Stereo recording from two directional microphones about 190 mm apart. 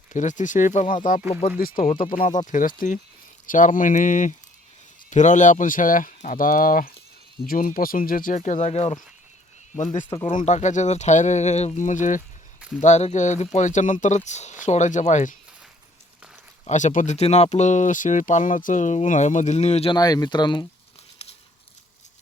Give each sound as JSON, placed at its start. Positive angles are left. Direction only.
{"t": 0.1, "sound": "speech", "side_deg": 40}
{"t": 16.6, "sound": "speech", "side_deg": 40}